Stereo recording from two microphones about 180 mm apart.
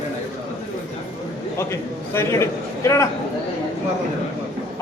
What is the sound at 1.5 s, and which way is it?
A man's voice, 15° left (ahead or behind).